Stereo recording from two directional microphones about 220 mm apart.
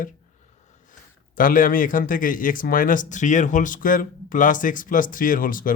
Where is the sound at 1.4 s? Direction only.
40° left (ahead or behind).